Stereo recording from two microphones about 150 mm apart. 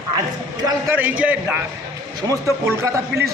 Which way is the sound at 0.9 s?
10° right (ahead or behind).